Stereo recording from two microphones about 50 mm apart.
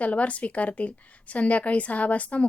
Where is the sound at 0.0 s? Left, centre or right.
Left.